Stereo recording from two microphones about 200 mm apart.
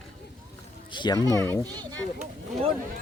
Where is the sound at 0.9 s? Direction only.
20° left (ahead or behind).